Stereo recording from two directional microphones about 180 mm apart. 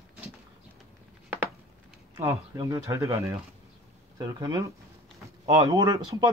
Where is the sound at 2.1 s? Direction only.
15° right (ahead or behind).